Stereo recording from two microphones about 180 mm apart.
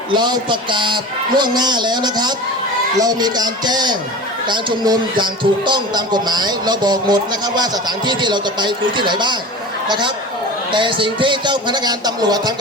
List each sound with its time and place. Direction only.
0.1 s speech: 25° right (ahead or behind)
10.7 s speech: 25° right (ahead or behind)